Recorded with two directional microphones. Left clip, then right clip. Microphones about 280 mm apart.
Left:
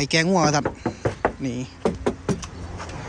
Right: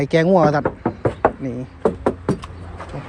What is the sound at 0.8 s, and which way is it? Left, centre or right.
Knock, centre.